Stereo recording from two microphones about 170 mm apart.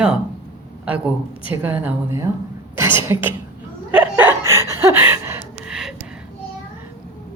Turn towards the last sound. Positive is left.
turn(degrees=-5)  # may be behind; listen again after turning